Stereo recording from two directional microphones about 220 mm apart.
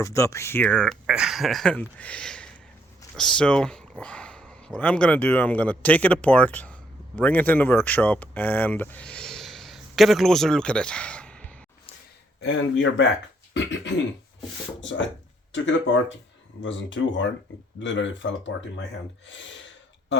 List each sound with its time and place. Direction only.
0.0 s speech: 15° left (ahead or behind)
12.4 s speech: 55° left (ahead or behind)
13.5 s a sound: 55° left (ahead or behind)
14.8 s speech: 55° left (ahead or behind)
16.6 s speech: 55° left (ahead or behind)
19.2 s gasp: 55° left (ahead or behind)